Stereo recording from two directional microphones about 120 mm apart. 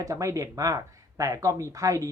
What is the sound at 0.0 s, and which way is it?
A man's voice, 25° right (ahead or behind).